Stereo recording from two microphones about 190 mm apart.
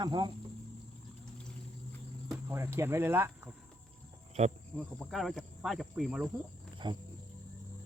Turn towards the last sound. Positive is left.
turn(degrees=-25)  # may be behind; listen again after turning